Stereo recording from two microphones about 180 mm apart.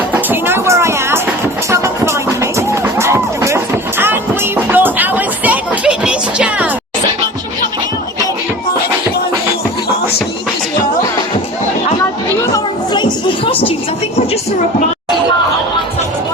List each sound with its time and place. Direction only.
0.1 s music: 10° right (ahead or behind)
12.5 s music: 25° left (ahead or behind)